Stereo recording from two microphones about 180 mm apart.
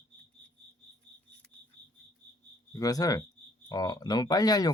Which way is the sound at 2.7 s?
20° left (ahead or behind).